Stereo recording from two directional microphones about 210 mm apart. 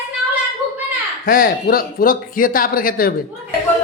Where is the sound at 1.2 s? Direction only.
40° left (ahead or behind).